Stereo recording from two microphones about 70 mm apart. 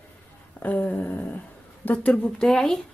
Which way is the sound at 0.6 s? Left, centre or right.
Left.